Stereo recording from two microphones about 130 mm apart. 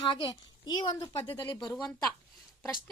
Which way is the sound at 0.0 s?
40° left (ahead or behind).